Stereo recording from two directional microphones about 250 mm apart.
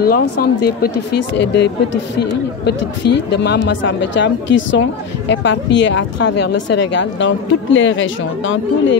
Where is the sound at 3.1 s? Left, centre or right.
Left.